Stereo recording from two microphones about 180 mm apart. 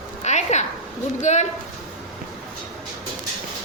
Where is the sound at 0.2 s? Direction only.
40° left (ahead or behind).